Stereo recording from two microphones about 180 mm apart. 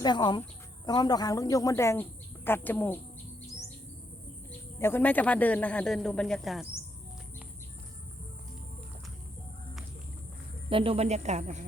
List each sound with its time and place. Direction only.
0.0 s speech: 25° left (ahead or behind)
4.8 s speech: 10° left (ahead or behind)
10.7 s speech: 30° right (ahead or behind)